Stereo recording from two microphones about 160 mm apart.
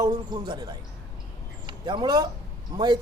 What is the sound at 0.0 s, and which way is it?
Speech, 25° right (ahead or behind).